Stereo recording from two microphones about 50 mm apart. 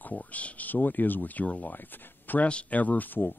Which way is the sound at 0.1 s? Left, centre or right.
Left.